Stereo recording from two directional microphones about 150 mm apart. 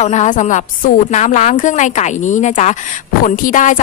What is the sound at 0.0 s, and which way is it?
A woman's voice, 50° left (ahead or behind).